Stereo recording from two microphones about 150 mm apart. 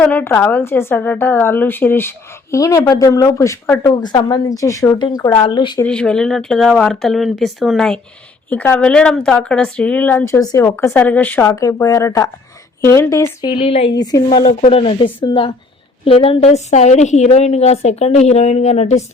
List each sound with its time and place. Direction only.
0.0 s a woman's voice: 10° left (ahead or behind)
4.0 s speech: 30° left (ahead or behind)
5.8 s a woman's voice: 5° left (ahead or behind); by 13.5 s 20° left (ahead or behind)
13.6 s speech: 40° left (ahead or behind)
13.9 s speech: 25° left (ahead or behind)
14.4 s a woman's voice: 45° left (ahead or behind)